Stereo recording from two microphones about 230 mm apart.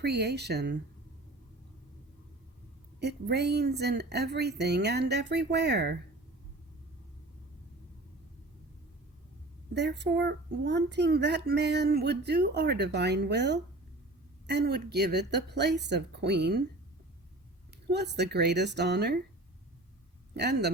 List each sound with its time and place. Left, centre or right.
0.0 s a child's voice: right
3.0 s a child's voice: right
9.7 s a child's voice: right
17.9 s a child's voice: right
20.3 s a child's voice: right